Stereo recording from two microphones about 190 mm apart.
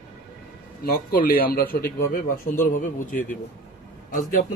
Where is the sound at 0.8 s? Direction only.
50° left (ahead or behind).